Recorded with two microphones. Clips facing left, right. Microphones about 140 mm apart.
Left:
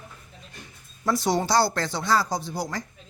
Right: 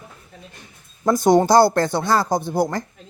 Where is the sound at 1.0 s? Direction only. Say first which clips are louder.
Right 9 dB; 50° right (ahead or behind).